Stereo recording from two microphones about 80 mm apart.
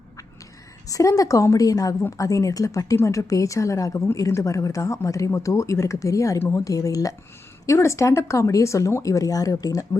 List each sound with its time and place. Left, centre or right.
0.9 s a woman's voice: left